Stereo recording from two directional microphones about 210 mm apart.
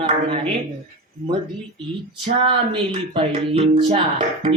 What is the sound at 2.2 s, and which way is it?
Speech, 25° right (ahead or behind).